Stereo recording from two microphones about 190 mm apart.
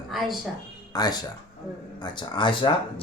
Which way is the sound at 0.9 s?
20° left (ahead or behind).